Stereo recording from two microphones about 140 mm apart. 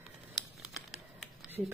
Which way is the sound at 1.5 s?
15° right (ahead or behind).